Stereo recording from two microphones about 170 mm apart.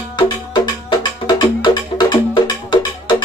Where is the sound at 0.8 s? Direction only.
25° left (ahead or behind).